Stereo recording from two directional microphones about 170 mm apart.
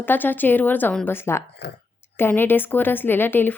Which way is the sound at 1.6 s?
80° left.